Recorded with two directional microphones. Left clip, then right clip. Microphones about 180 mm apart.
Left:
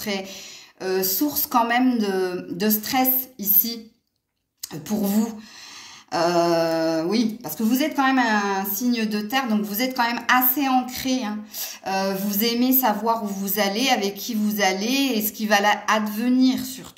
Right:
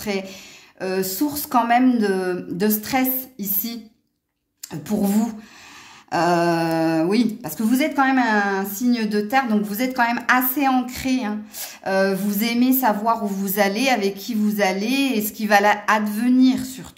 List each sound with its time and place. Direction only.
0.0 s speech: 40° right (ahead or behind)
4.8 s speech: 40° right (ahead or behind)